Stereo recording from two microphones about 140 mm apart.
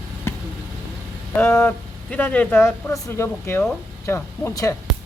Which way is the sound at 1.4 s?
15° left (ahead or behind).